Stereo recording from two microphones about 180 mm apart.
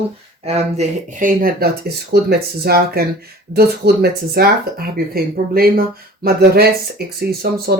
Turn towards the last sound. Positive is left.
turn(degrees=-60)  # may be behind; listen again after turning